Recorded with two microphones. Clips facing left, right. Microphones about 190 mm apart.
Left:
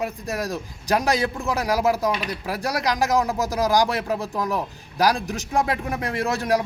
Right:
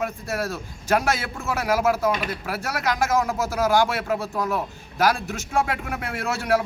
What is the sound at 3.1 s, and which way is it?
A man's voice, 15° left (ahead or behind).